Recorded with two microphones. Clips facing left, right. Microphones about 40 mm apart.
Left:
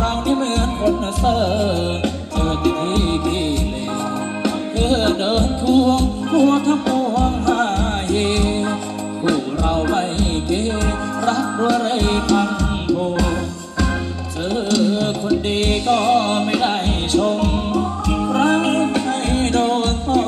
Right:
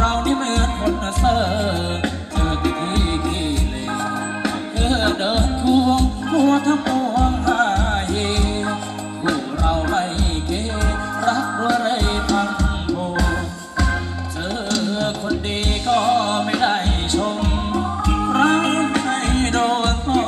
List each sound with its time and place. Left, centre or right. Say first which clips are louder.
0.8 s music: left 2 dB; centre
4.8 s music: left 2 dB; centre
9.2 s music: left 2 dB; centre
11.2 s music: left 1 dB; centre
14.7 s music: left 4 dB; centre
18.7 s music: left 1 dB; right